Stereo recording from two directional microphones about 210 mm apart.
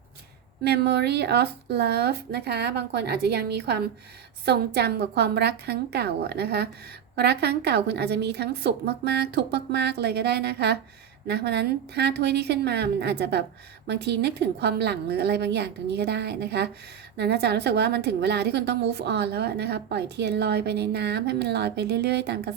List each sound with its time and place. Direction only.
0.6 s a woman's voice: 50° right (ahead or behind)